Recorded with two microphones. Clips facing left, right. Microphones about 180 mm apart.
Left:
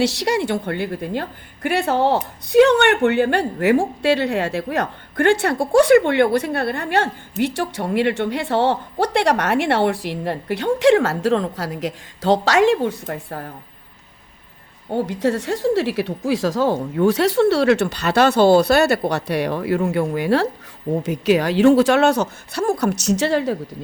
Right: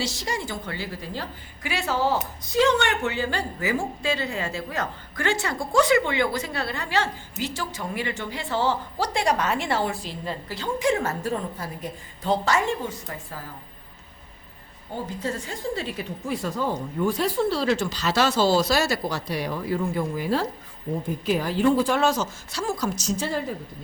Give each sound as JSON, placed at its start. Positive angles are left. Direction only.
{"t": 0.0, "sound": "a woman's voice", "side_deg": 70}
{"t": 14.8, "sound": "a woman's voice", "side_deg": 70}